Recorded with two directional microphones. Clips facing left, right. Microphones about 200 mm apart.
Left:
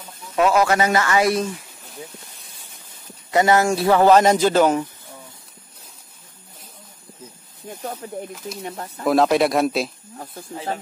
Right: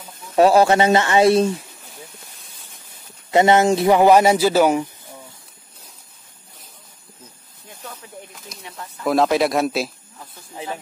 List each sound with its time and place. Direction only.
0.4 s a man's voice: 30° right (ahead or behind)
3.3 s speech: 25° right (ahead or behind)
7.8 s speech: 40° left (ahead or behind)
9.0 s speech: centre (ahead or behind)